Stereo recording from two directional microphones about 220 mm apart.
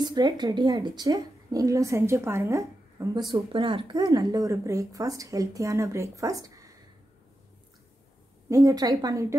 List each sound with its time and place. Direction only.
0.0 s speech: 20° right (ahead or behind)
8.5 s speech: 15° right (ahead or behind)